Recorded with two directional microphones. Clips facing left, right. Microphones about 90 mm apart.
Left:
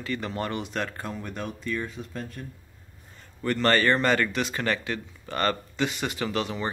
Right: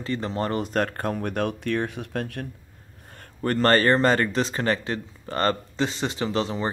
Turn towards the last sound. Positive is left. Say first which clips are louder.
# right 3 dB
turn(degrees=-30)  # may be behind; listen again after turning